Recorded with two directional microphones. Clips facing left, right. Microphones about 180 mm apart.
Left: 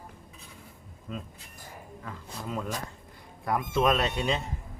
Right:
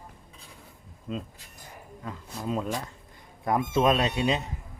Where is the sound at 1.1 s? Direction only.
20° right (ahead or behind).